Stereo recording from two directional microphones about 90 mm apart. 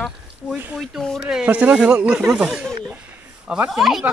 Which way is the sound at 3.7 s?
5° right (ahead or behind).